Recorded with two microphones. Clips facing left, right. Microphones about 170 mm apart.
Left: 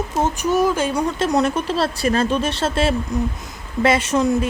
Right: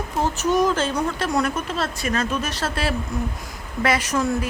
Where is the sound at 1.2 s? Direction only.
25° left (ahead or behind).